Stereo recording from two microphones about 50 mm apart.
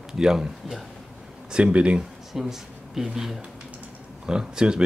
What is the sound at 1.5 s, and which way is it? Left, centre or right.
Speech, right.